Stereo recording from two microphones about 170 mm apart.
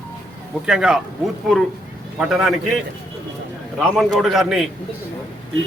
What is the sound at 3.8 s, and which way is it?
Speech, centre (ahead or behind).